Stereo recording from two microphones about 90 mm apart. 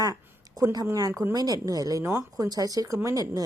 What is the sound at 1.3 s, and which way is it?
Speech, 45° right (ahead or behind).